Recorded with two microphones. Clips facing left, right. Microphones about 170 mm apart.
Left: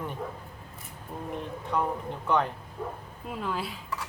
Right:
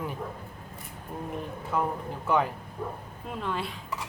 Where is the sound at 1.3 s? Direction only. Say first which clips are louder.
Even; 5° right (ahead or behind).